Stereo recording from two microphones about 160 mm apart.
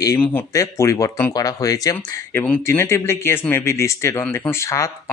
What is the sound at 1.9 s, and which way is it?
Speech, 10° left (ahead or behind).